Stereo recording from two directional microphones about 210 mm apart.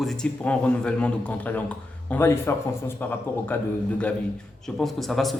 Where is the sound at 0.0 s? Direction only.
Centre (ahead or behind).